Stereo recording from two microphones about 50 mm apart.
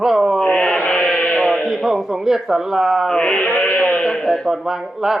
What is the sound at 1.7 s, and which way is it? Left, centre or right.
Speech, centre.